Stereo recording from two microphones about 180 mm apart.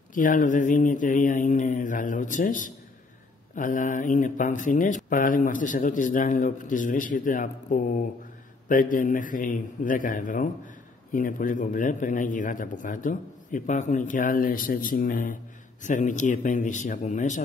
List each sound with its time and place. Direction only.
0.1 s speech: 45° left (ahead or behind)